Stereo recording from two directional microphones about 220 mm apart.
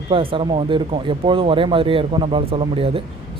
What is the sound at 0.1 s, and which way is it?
A man's voice, 25° right (ahead or behind).